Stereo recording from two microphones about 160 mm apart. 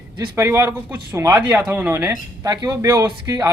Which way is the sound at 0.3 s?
20° right (ahead or behind).